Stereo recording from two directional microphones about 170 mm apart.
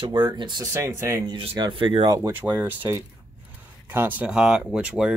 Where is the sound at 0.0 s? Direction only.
30° right (ahead or behind).